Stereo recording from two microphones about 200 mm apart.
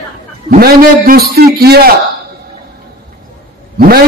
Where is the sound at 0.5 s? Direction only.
45° right (ahead or behind).